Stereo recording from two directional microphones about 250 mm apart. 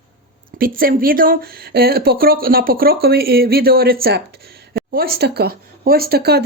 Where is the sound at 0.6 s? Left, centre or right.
Right.